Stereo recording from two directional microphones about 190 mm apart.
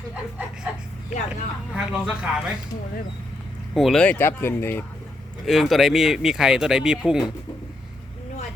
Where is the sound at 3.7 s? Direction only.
Centre (ahead or behind).